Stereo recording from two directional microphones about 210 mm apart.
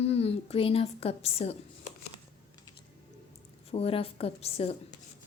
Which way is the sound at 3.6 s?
25° left (ahead or behind).